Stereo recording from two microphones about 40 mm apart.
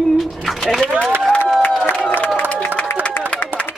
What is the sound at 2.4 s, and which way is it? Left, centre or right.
Crowd, left.